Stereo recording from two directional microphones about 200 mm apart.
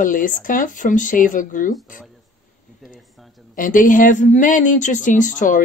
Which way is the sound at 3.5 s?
40° left (ahead or behind).